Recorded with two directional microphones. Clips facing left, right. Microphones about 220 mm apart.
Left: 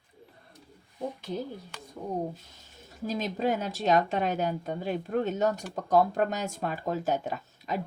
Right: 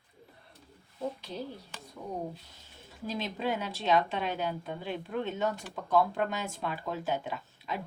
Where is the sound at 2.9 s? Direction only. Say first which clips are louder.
Left 4 dB; 45° left (ahead or behind).